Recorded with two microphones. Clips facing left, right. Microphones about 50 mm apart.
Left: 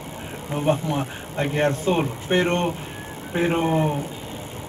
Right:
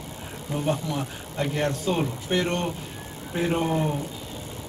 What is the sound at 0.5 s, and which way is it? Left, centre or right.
A man's voice, left.